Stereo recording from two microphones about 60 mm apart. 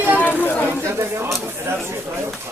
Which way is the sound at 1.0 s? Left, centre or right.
Right.